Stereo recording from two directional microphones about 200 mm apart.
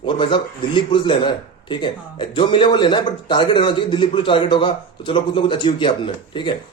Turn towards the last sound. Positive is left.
turn(degrees=25)  # may be behind; listen again after turning